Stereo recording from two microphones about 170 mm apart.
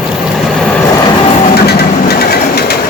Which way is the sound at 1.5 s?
70° left (ahead or behind).